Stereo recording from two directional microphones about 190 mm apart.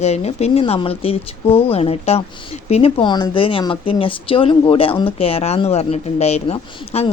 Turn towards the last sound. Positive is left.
turn(degrees=30)  # may be behind; listen again after turning